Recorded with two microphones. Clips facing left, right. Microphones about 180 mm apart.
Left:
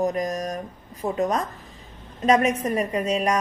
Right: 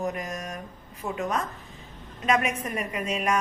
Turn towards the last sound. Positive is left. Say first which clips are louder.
# left 5 dB
turn(degrees=35)  # may be behind; listen again after turning